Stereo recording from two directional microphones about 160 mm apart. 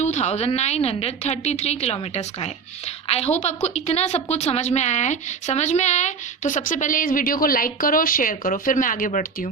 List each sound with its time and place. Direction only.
0.0 s a woman's voice: 45° left (ahead or behind)